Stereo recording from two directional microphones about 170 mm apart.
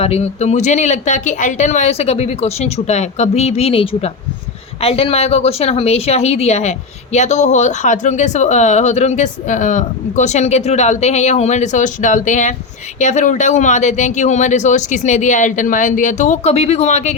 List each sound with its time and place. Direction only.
0.0 s speech: 40° left (ahead or behind)